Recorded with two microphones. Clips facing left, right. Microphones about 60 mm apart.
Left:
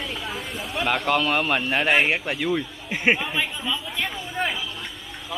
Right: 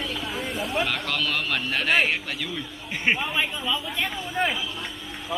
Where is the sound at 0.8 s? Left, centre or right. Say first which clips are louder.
Left 5 dB; centre.